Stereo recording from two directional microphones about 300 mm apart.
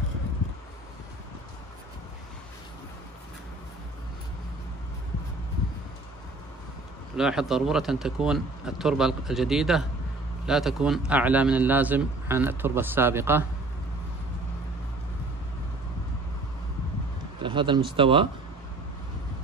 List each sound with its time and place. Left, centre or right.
7.2 s a man's voice: centre
17.4 s speech: centre